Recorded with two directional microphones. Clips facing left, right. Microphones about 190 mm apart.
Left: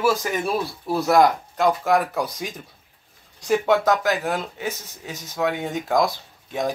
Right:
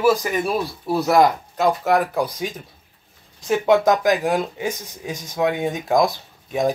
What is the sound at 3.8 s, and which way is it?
Speech, 15° right (ahead or behind).